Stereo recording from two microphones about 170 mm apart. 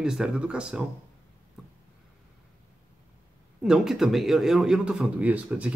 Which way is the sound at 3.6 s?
5° right (ahead or behind).